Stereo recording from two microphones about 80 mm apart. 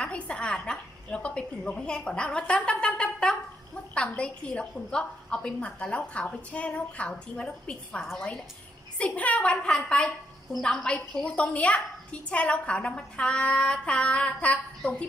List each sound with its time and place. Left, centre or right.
0.0 s a woman's voice: centre
8.9 s a woman's voice: centre